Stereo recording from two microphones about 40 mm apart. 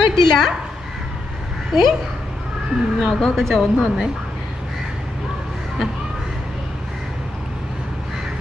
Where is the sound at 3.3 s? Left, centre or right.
Centre.